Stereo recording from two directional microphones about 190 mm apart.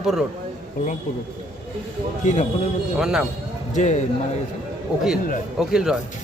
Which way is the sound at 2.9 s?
5° right (ahead or behind).